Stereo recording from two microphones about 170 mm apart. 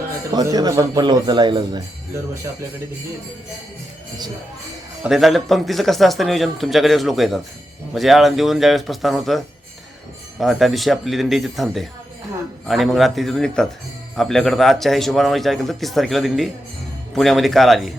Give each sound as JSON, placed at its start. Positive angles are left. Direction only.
{"t": 0.3, "sound": "a man's voice", "side_deg": -20}
{"t": 5.0, "sound": "speech", "side_deg": 0}
{"t": 10.4, "sound": "speech", "side_deg": 0}